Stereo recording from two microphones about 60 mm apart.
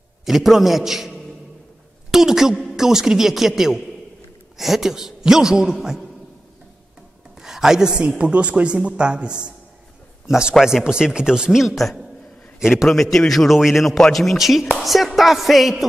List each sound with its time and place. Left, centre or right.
0.2 s a man's voice: centre
7.3 s a woman's voice: centre